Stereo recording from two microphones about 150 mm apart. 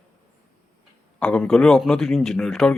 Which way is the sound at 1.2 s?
5° left (ahead or behind).